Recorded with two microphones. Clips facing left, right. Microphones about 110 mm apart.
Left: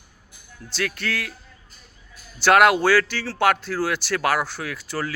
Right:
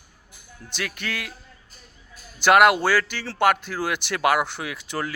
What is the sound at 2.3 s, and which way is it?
Speech, 10° right (ahead or behind).